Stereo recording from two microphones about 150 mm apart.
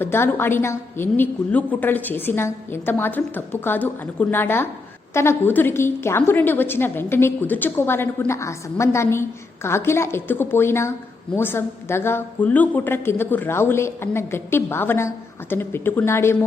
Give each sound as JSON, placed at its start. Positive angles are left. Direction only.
{"t": 0.0, "sound": "a woman's voice", "side_deg": 15}